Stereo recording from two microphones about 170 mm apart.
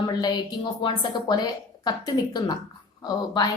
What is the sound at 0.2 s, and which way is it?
A woman's voice, 25° left (ahead or behind).